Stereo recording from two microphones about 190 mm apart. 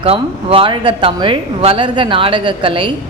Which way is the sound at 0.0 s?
30° right (ahead or behind).